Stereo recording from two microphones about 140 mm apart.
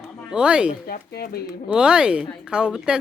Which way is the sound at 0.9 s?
90° left.